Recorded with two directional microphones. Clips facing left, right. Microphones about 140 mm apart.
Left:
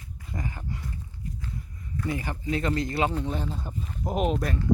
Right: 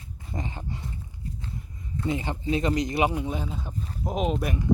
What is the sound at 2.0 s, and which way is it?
Speech, 25° right (ahead or behind).